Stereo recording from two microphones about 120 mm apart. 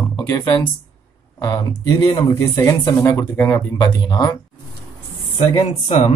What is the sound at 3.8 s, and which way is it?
Speech, 35° left (ahead or behind).